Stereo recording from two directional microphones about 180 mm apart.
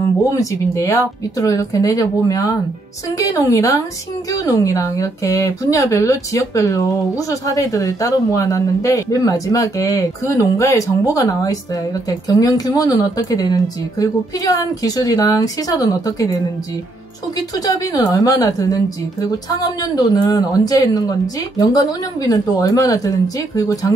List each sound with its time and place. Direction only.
0.0 s speech: 20° left (ahead or behind)